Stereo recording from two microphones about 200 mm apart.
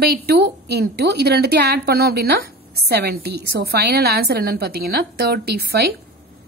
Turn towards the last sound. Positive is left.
turn(degrees=-55)  # may be behind; listen again after turning